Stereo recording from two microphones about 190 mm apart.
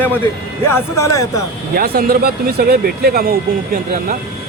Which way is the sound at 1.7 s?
55° right (ahead or behind).